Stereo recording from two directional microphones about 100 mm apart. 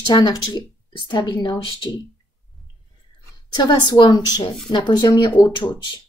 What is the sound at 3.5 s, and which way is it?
Speech, 45° left (ahead or behind).